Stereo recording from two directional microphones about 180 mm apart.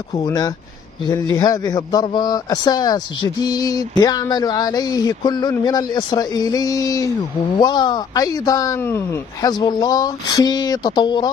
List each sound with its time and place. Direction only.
0.1 s a man's voice: 20° left (ahead or behind)